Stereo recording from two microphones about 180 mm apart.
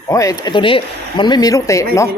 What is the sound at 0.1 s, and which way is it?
Speech, 20° left (ahead or behind).